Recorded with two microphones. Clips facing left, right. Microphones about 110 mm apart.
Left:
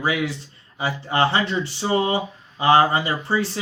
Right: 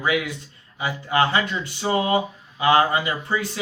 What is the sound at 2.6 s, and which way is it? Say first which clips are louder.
Speech: left 2 dB; 30° left (ahead or behind).